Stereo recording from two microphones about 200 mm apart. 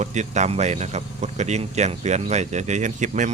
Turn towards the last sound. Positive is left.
turn(degrees=-40)  # may be behind; listen again after turning